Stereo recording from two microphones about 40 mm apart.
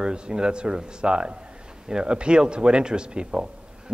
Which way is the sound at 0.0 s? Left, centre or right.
Right.